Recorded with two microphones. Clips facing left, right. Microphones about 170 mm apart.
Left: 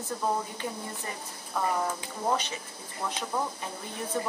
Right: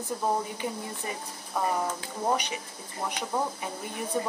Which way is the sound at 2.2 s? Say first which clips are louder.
Right 1 dB; 15° right (ahead or behind).